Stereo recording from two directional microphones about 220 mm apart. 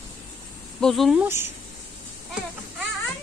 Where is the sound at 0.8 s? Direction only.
Centre (ahead or behind).